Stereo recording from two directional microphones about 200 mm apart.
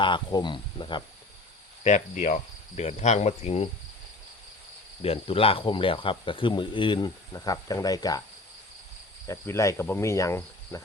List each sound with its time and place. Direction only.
0.0 s speech: 20° left (ahead or behind)
1.8 s cricket: 40° left (ahead or behind)
5.0 s speech: 30° left (ahead or behind)
9.2 s cricket: 15° left (ahead or behind)